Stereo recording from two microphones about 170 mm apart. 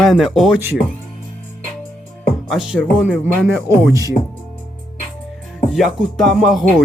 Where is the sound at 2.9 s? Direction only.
5° right (ahead or behind).